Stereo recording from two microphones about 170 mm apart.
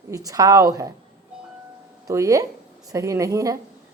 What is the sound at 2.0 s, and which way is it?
A woman's voice, 20° right (ahead or behind).